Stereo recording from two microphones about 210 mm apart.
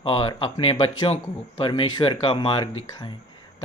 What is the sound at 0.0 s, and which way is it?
Speech, 25° left (ahead or behind).